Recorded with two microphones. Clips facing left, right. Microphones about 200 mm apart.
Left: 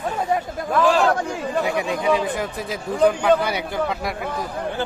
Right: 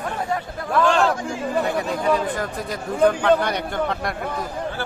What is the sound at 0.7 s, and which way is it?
Speech, 5° left (ahead or behind).